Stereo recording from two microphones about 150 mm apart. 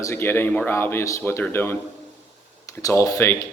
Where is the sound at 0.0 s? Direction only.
15° left (ahead or behind).